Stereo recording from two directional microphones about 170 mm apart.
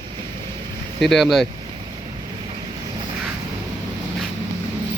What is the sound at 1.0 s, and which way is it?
Speech, centre (ahead or behind).